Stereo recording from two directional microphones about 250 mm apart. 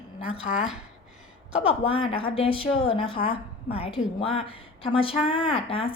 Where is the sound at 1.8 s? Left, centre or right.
Left.